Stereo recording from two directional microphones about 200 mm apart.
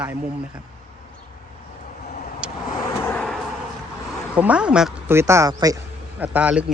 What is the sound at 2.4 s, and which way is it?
Vehicle, 5° right (ahead or behind).